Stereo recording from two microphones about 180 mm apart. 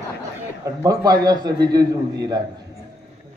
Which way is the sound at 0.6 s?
20° right (ahead or behind).